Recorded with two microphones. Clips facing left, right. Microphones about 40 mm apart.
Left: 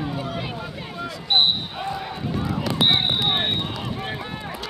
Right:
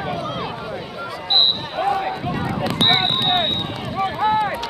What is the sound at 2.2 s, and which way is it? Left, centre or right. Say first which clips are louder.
Speech: right 3 dB; right.